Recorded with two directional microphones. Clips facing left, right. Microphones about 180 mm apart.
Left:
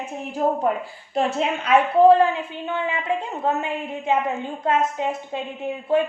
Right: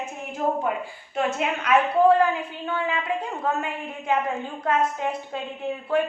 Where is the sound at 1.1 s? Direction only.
35° left (ahead or behind).